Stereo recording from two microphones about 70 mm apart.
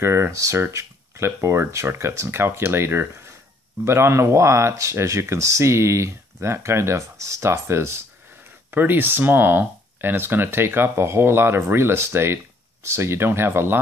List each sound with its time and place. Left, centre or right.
0.0 s speech: right